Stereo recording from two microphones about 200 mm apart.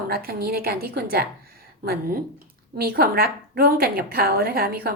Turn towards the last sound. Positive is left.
turn(degrees=-50)  # may be behind; listen again after turning